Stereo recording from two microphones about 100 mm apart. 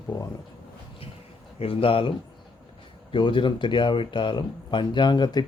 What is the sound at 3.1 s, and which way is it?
Speech, 55° left (ahead or behind).